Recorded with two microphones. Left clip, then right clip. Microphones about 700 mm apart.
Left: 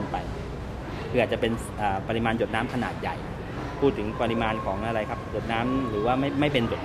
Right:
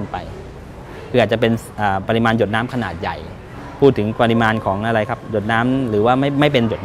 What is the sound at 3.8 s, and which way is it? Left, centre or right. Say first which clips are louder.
A man's voice: right 11 dB; right.